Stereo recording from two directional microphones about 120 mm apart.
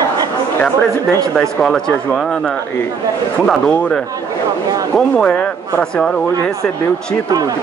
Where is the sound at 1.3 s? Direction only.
5° left (ahead or behind).